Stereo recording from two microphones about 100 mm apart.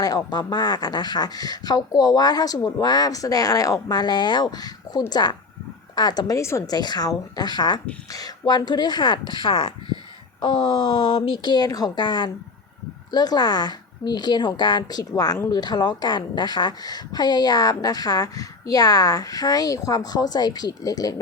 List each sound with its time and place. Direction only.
0.0 s a woman's voice: 40° left (ahead or behind)
6.7 s a woman's voice: 45° left (ahead or behind)